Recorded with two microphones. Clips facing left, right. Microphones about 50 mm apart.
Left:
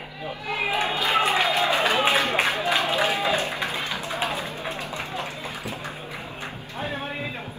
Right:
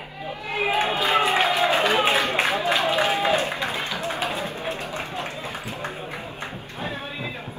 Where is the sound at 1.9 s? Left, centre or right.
Right.